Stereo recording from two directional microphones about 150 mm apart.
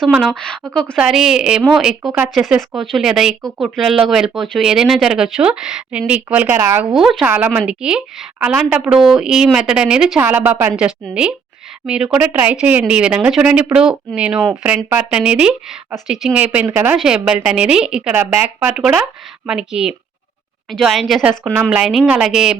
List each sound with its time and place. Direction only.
0.1 s a woman's voice: centre (ahead or behind)
2.4 s a woman's voice: centre (ahead or behind); by 6.8 s 15° right (ahead or behind)
6.8 s a woman's voice: 5° right (ahead or behind)
16.6 s speech: 20° right (ahead or behind)
16.9 s a woman's voice: 5° right (ahead or behind)
18.7 s speech: centre (ahead or behind)
21.2 s a woman's voice: 10° right (ahead or behind)